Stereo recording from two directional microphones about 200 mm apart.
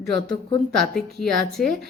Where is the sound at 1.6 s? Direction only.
45° left (ahead or behind).